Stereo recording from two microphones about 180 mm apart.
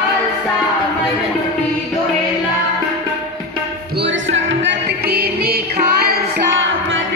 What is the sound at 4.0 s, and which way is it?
Music, 90° right.